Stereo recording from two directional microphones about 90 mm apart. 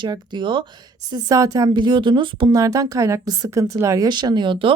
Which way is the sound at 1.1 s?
40° right (ahead or behind).